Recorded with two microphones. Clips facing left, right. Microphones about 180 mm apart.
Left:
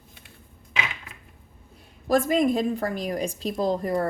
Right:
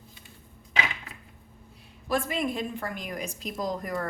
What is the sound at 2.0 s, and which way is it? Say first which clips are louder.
A woman's voice: left 7 dB; 40° left (ahead or behind).